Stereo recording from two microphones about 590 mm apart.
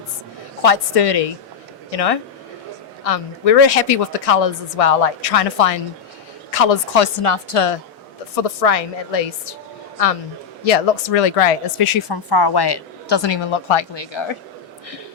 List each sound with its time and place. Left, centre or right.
0.6 s a woman's voice: left
10.7 s speech: left